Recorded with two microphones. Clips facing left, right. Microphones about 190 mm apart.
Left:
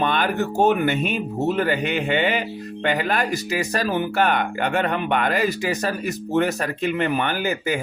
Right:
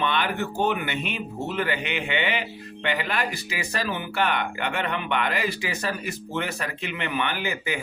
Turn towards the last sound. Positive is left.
turn(degrees=40)  # may be behind; listen again after turning